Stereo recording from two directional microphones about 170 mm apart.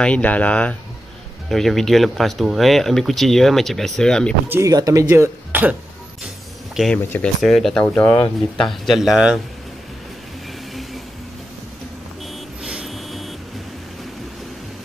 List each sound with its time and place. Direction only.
0.0 s speech: 10° left (ahead or behind)
4.5 s speech: 15° right (ahead or behind)
6.2 s a sound: centre (ahead or behind)
7.4 s speech: centre (ahead or behind)
7.9 s speech: 15° left (ahead or behind)
8.5 s speech: centre (ahead or behind)
10.7 s vehicle: centre (ahead or behind)
12.6 s a sound: centre (ahead or behind)